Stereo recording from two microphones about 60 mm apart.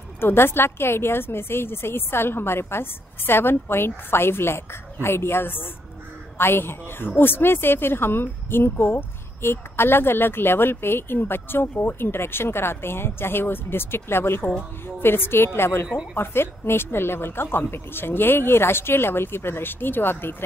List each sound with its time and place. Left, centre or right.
0.2 s a woman's voice: left